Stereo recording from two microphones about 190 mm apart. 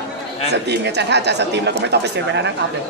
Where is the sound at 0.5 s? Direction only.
60° right (ahead or behind).